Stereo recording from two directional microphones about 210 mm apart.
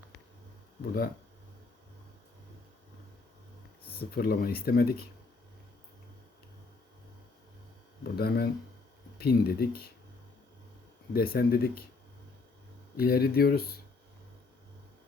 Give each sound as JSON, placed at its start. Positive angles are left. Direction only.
{"t": 0.8, "sound": "speech", "side_deg": 45}
{"t": 4.1, "sound": "speech", "side_deg": 45}
{"t": 8.0, "sound": "speech", "side_deg": 50}
{"t": 11.1, "sound": "speech", "side_deg": 45}
{"t": 13.0, "sound": "speech", "side_deg": 50}